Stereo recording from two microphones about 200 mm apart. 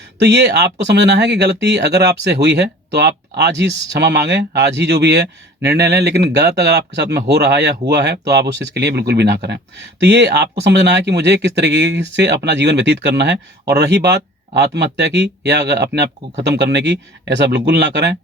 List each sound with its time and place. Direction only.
0.2 s speech: 60° right (ahead or behind)